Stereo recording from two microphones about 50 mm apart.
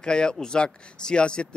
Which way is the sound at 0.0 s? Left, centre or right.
Centre.